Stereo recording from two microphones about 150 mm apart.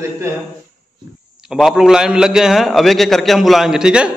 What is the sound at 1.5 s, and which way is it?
A man's voice, 5° right (ahead or behind).